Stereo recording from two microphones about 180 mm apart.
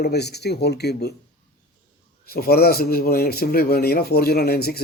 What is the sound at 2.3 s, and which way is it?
Speech, 60° left (ahead or behind).